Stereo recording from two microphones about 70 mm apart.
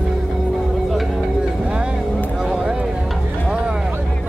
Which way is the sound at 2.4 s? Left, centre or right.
Centre.